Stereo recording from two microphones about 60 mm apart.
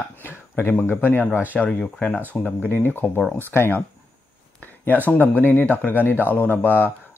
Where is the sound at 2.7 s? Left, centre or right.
Left.